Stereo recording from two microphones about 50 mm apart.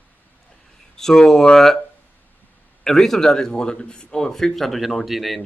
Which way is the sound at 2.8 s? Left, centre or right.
Centre.